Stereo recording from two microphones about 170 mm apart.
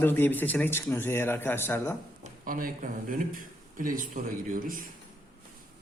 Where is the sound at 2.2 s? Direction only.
55° right (ahead or behind).